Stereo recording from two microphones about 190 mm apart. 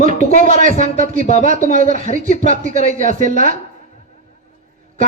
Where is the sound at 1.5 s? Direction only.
45° right (ahead or behind).